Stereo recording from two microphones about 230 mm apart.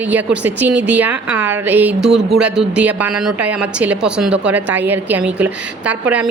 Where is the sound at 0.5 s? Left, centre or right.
Right.